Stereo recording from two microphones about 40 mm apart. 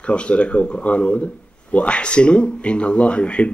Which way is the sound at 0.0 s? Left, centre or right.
Left.